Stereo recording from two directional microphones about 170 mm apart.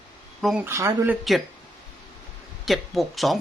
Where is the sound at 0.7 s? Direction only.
15° right (ahead or behind).